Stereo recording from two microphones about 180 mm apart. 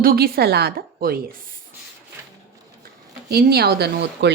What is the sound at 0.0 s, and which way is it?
Speech, 55° right (ahead or behind).